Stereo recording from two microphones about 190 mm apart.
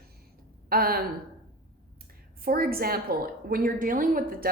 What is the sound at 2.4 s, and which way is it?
A woman's voice, 50° right (ahead or behind).